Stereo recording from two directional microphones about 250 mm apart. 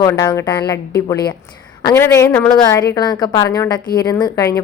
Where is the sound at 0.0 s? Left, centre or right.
Centre.